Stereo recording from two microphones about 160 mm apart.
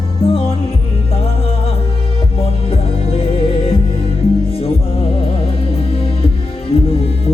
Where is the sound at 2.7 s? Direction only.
35° left (ahead or behind).